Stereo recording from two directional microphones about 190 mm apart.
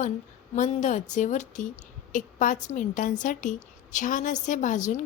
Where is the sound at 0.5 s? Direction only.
40° left (ahead or behind).